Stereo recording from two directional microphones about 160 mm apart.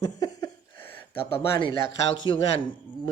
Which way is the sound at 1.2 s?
35° left (ahead or behind).